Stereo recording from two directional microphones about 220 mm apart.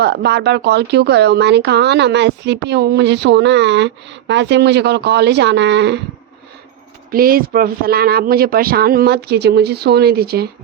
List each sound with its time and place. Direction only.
0.0 s a woman's voice: 50° right (ahead or behind)
7.1 s a woman's voice: 40° right (ahead or behind)